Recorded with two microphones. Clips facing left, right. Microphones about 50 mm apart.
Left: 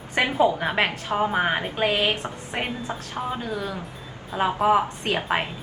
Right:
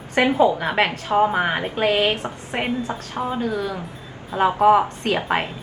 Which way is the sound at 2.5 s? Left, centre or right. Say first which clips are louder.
Right 3 dB; centre.